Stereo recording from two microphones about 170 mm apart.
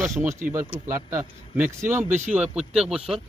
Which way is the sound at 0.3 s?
15° right (ahead or behind).